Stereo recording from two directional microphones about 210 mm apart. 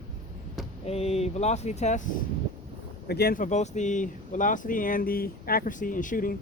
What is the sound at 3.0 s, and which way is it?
Speech, 50° left (ahead or behind).